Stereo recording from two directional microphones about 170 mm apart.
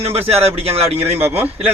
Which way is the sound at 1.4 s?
10° right (ahead or behind).